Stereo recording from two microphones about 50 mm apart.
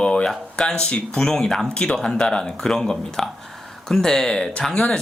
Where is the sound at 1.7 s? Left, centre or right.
Left.